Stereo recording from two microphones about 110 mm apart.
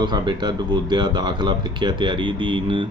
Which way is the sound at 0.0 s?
40° right (ahead or behind).